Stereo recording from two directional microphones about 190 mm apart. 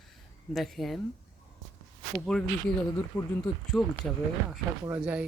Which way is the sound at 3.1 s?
20° left (ahead or behind).